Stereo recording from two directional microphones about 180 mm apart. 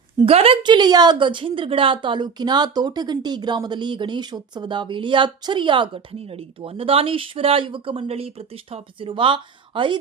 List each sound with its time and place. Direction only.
0.2 s a woman's voice: 30° right (ahead or behind)